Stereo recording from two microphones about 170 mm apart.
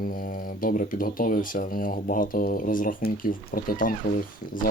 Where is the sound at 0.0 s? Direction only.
55° left (ahead or behind).